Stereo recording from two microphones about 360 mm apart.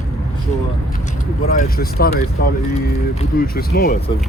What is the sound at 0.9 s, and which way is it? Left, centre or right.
Speech, centre.